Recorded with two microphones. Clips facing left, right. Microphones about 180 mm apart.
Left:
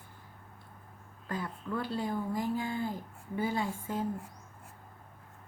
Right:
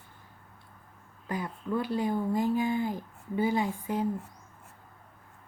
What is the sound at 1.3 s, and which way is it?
Speech, 20° right (ahead or behind).